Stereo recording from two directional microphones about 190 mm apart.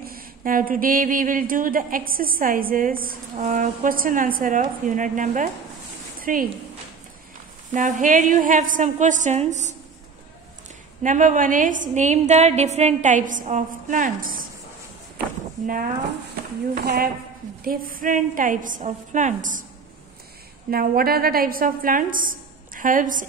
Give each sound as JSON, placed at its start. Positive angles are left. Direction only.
{"t": 0.0, "sound": "a woman's voice", "side_deg": -50}
{"t": 7.7, "sound": "a woman's voice", "side_deg": -40}
{"t": 11.0, "sound": "a woman's voice", "side_deg": -40}
{"t": 16.7, "sound": "a woman's voice", "side_deg": -55}
{"t": 20.7, "sound": "a woman's voice", "side_deg": -50}